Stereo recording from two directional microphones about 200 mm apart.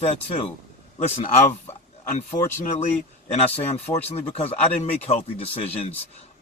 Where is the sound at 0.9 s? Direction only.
35° left (ahead or behind).